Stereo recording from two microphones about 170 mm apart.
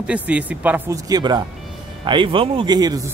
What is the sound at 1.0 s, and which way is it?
Speech, 25° right (ahead or behind).